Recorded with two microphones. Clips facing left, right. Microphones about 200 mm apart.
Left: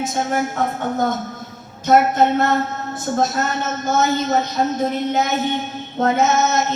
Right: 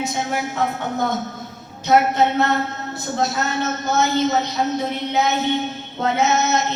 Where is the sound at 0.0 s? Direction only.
50° left (ahead or behind).